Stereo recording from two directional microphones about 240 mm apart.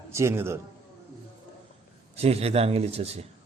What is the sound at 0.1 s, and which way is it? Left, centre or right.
Speech, centre.